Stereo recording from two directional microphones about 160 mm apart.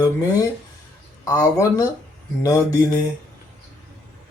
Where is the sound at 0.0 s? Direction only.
20° left (ahead or behind).